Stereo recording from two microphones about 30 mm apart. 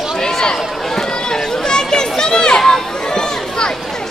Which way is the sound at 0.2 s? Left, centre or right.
Left.